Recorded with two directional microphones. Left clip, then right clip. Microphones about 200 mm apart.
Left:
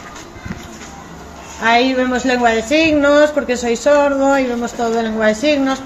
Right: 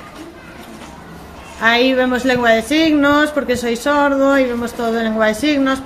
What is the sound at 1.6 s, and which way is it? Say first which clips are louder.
Speech: even; 40° right (ahead or behind).